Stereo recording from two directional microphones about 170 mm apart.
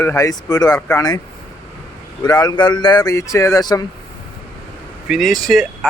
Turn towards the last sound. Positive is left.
turn(degrees=0)  # may be behind; listen again after turning